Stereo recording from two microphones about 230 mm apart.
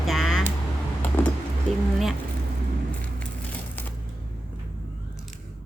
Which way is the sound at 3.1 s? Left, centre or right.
Centre.